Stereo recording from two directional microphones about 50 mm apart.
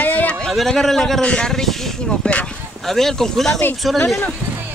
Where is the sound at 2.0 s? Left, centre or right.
Centre.